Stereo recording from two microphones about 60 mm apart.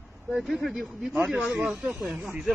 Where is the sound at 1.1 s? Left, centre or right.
Right.